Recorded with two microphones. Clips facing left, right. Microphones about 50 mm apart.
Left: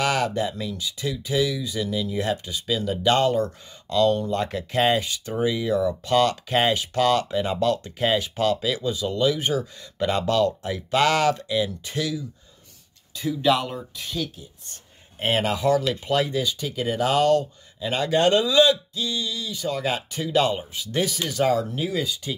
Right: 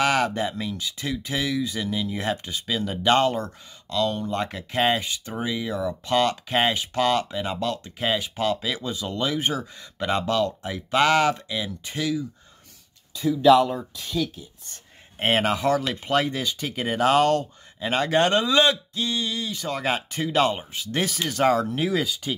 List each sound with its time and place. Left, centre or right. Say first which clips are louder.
0.0 s speech: right 1 dB; right
0.7 s speech: left 1 dB; right
4.1 s speech: left 4 dB; centre
5.3 s speech: left 6 dB; centre
7.2 s speech: left 5 dB; centre
8.7 s speech: left 4 dB; right
9.6 s speech: left 4 dB; centre
15.1 s speech: right 1 dB; right
21.8 s speech: right 2 dB; right